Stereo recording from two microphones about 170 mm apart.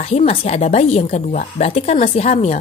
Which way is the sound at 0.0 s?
35° left (ahead or behind).